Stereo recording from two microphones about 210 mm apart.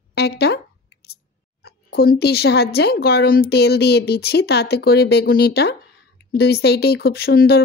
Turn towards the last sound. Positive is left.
turn(degrees=45)  # may be behind; listen again after turning